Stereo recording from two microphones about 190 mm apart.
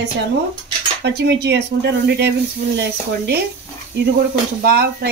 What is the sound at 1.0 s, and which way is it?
Speech, 65° right (ahead or behind).